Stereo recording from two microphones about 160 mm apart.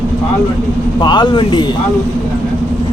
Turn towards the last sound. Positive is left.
turn(degrees=30)  # may be behind; listen again after turning